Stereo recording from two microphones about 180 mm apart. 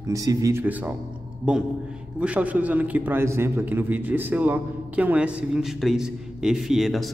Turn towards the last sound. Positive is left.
turn(degrees=0)  # may be behind; listen again after turning